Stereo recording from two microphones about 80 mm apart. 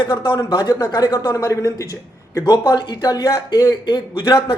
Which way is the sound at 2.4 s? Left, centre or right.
Left.